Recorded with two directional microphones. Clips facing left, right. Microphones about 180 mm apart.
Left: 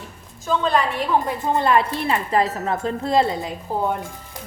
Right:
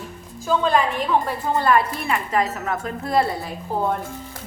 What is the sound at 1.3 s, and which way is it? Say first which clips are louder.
A woman's voice: even; 20° left (ahead or behind).